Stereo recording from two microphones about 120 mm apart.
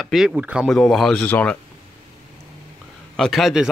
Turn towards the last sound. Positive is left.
turn(degrees=0)  # may be behind; listen again after turning